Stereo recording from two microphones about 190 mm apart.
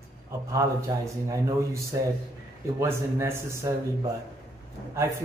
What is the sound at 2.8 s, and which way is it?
Speech, 15° right (ahead or behind).